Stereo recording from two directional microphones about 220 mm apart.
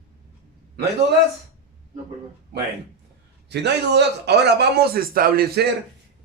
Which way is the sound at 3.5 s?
50° right (ahead or behind).